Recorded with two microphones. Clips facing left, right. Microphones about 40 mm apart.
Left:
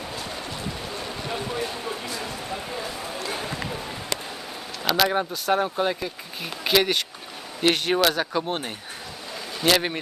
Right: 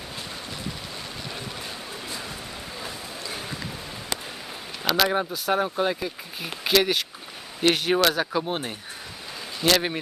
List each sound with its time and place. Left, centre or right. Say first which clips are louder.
1.3 s speech: left 10 dB; left
2.2 s a sound: left 5 dB; left
3.3 s run: left 4 dB; centre
4.8 s speech: left 1 dB; centre